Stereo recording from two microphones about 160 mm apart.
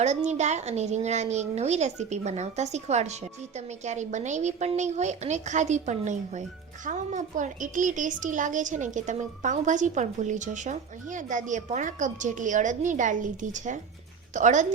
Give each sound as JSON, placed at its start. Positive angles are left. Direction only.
{"t": 0.3, "sound": "a woman's voice", "side_deg": -45}